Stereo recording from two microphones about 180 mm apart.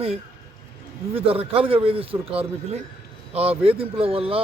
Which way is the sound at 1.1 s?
30° right (ahead or behind).